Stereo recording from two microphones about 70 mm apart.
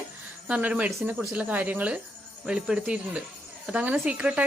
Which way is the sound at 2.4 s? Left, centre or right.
Centre.